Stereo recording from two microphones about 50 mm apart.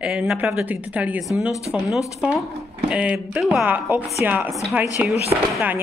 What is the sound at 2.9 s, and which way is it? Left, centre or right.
Speech, right.